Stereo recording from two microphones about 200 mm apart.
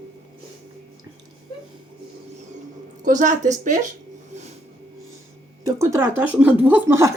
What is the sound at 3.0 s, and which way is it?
Speech, 40° right (ahead or behind).